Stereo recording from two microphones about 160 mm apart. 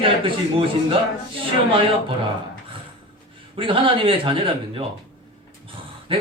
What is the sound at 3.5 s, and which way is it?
A man's voice, 35° right (ahead or behind).